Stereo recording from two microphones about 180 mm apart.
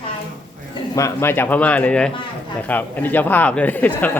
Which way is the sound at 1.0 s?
15° left (ahead or behind).